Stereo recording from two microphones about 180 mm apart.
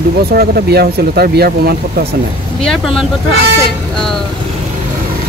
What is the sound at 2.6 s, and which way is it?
Speech, centre (ahead or behind).